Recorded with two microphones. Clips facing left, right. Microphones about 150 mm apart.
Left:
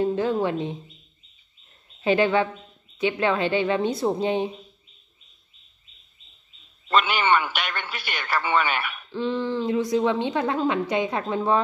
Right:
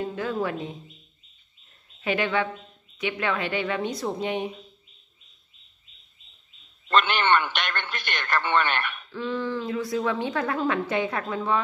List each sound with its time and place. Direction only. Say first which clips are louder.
0.0 s a woman's voice: left 5 dB; 30° left (ahead or behind)
2.0 s a woman's voice: left 5 dB; 30° left (ahead or behind)
6.9 s a man's voice: left 1 dB; 10° left (ahead or behind)
9.1 s a woman's voice: left 3 dB; 25° left (ahead or behind)